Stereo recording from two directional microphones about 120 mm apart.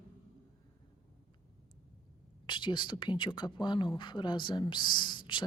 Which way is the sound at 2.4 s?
40° left (ahead or behind).